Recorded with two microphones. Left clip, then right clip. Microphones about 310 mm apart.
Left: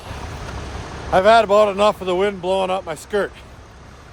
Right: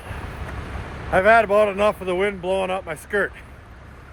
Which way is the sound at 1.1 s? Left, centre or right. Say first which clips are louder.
Left 3 dB; centre.